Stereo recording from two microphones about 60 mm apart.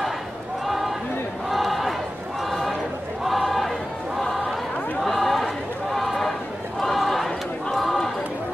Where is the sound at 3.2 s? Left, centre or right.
Centre.